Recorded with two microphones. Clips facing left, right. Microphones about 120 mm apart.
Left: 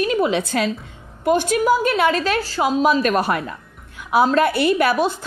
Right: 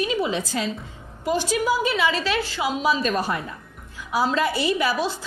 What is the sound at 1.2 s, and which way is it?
A woman's voice, 55° left (ahead or behind).